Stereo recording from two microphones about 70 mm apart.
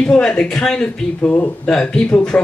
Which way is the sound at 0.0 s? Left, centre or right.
Centre.